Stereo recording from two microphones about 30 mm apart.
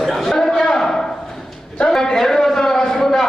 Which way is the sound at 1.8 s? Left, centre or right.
Centre.